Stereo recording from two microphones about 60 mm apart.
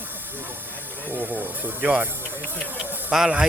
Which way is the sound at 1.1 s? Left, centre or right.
Right.